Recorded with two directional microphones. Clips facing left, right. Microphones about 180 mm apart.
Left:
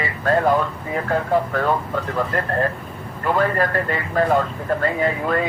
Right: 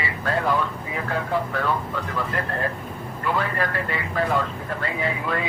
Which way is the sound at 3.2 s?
45° left (ahead or behind).